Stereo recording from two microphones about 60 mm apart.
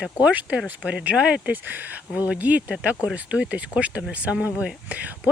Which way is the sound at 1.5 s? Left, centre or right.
Right.